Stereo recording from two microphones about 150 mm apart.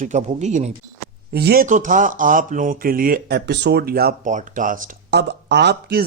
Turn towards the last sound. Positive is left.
turn(degrees=-90)